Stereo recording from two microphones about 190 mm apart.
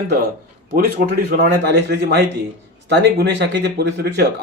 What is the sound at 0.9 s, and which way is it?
Speech, 60° right (ahead or behind).